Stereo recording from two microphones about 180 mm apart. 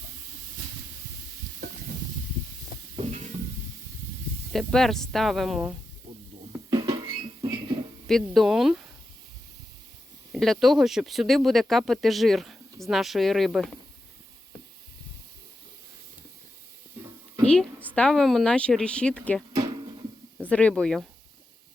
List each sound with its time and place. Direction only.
2.9 s stir: 40° right (ahead or behind)
4.5 s speech: centre (ahead or behind)
6.7 s music: 20° right (ahead or behind)
8.0 s speech: centre (ahead or behind)
10.3 s speech: centre (ahead or behind)
17.9 s speech: 5° left (ahead or behind)
19.5 s a sound: 25° right (ahead or behind)
20.4 s speech: 5° left (ahead or behind)